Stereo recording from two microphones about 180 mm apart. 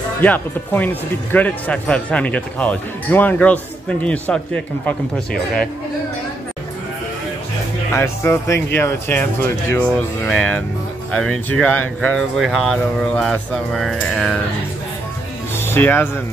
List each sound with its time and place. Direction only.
0.2 s speech: 10° left (ahead or behind)
7.9 s speech: 15° left (ahead or behind)
15.5 s music: 10° left (ahead or behind)